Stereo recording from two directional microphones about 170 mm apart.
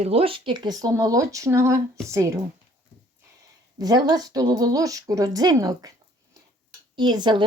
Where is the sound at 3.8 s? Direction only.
20° right (ahead or behind).